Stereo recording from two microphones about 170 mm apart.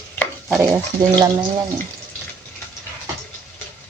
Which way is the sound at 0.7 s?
15° right (ahead or behind).